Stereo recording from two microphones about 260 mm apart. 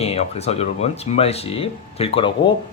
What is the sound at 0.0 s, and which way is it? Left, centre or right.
Speech, left.